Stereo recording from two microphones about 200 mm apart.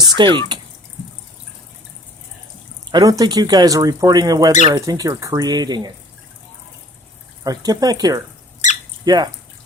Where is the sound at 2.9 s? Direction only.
20° right (ahead or behind).